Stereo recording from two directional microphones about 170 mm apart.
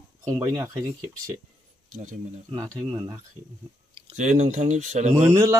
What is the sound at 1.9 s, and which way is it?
Speech, 45° right (ahead or behind).